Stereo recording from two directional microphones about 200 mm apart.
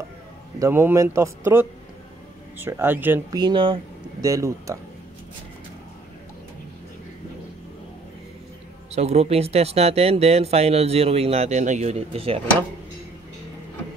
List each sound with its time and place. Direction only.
0.6 s speech: 10° right (ahead or behind)
3.3 s speech: 25° right (ahead or behind)
8.9 s speech: 30° right (ahead or behind)